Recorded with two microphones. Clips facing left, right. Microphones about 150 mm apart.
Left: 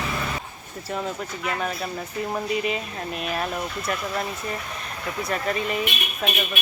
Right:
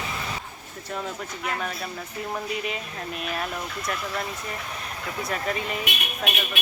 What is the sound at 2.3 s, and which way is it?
Speech, centre (ahead or behind).